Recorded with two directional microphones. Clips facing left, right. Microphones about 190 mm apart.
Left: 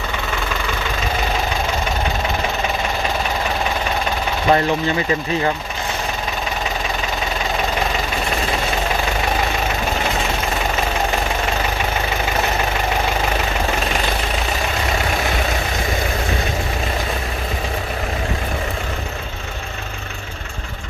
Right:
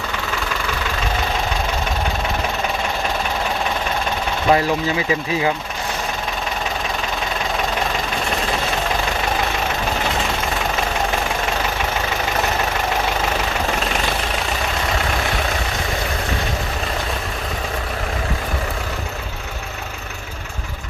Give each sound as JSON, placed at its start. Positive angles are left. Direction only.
{"t": 4.4, "sound": "speech", "side_deg": 0}